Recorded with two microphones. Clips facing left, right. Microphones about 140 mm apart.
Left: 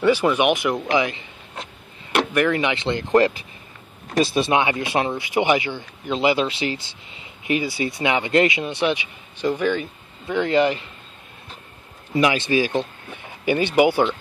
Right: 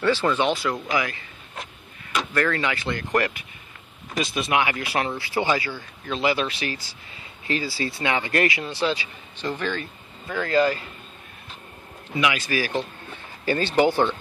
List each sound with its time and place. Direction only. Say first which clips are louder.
0.0 s speech: left 4 dB; 15° left (ahead or behind)
0.9 s a sound: left 5 dB; 20° left (ahead or behind)
2.3 s speech: left 2 dB; 15° left (ahead or behind)
12.2 s speech: left 5 dB; 30° left (ahead or behind); by 14.1 s 10° left (ahead or behind)